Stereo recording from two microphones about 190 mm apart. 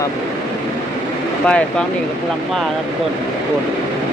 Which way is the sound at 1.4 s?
5° left (ahead or behind).